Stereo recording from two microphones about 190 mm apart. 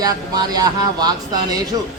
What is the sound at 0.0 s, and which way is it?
Speech, 20° right (ahead or behind).